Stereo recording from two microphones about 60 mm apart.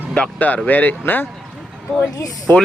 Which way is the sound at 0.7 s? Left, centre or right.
Left.